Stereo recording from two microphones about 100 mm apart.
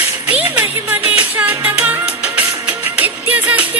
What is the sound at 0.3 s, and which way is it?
Music, 15° right (ahead or behind).